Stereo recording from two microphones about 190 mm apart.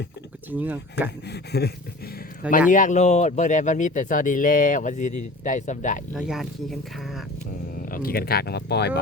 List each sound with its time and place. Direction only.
0.5 s speech: 10° right (ahead or behind)
1.3 s speech: 60° left (ahead or behind)
2.6 s speech: 40° left (ahead or behind)
6.1 s speech: centre (ahead or behind)
7.9 s speech: 50° left (ahead or behind)